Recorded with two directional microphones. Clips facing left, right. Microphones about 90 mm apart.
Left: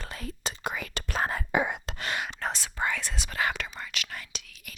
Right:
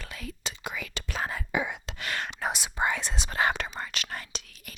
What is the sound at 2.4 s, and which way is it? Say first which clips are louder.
Speech: right 2 dB; 15° right (ahead or behind).